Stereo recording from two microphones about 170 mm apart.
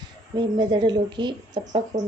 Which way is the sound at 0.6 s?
25° right (ahead or behind).